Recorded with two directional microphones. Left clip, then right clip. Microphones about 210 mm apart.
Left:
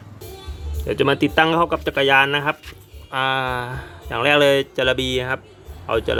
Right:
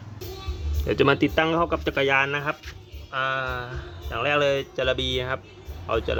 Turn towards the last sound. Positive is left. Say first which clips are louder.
# left 5 dB
turn(degrees=25)  # may be behind; listen again after turning